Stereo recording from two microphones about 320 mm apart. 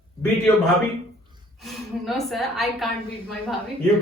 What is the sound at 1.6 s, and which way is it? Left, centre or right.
Speech, centre.